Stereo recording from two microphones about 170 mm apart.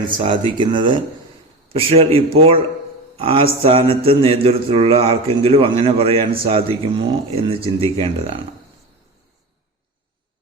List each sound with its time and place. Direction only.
0.2 s a man's voice: 30° right (ahead or behind)